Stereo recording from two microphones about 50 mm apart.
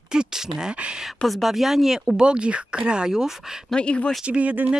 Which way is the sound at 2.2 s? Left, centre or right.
Centre.